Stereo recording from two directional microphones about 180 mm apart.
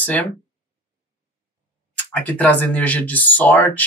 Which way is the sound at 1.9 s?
10° left (ahead or behind).